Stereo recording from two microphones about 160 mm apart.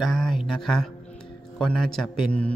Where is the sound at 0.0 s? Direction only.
Centre (ahead or behind).